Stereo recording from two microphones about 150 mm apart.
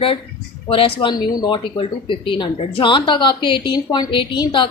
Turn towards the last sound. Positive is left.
turn(degrees=30)  # may be behind; listen again after turning